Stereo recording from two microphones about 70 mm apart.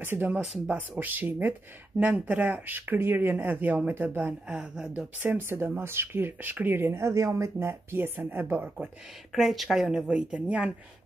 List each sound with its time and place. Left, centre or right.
0.0 s speech: right
4.5 s a woman's voice: centre
5.2 s speech: right
9.3 s a woman's voice: centre